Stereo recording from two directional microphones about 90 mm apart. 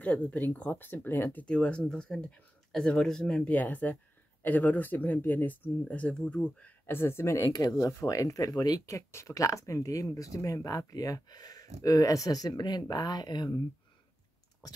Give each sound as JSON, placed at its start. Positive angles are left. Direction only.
{"t": 0.0, "sound": "speech", "side_deg": 15}
{"t": 1.4, "sound": "speech", "side_deg": 10}
{"t": 7.5, "sound": "speech", "side_deg": 45}